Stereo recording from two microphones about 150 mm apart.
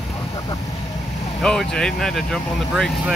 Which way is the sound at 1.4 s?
5° left (ahead or behind).